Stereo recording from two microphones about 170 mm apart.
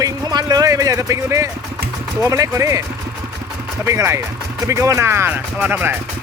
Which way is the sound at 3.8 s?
15° right (ahead or behind).